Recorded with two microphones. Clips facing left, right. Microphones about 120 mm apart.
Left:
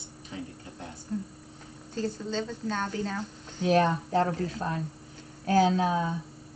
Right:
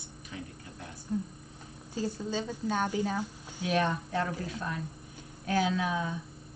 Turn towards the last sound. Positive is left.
turn(degrees=35)  # may be behind; listen again after turning